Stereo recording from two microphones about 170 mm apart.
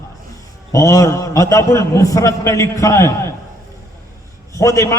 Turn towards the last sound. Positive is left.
turn(degrees=20)  # may be behind; listen again after turning